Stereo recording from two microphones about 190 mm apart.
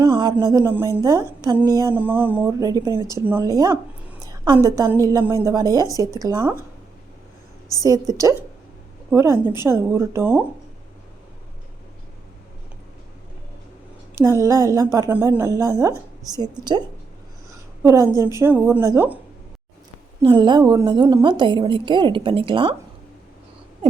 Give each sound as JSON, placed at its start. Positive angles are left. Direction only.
{"t": 0.0, "sound": "a sound", "side_deg": -20}
{"t": 0.3, "sound": "a woman's voice", "side_deg": -15}
{"t": 7.8, "sound": "speech", "side_deg": -20}
{"t": 14.2, "sound": "a woman's voice", "side_deg": -15}
{"t": 17.8, "sound": "speech", "side_deg": -15}
{"t": 20.2, "sound": "a woman's voice", "side_deg": -25}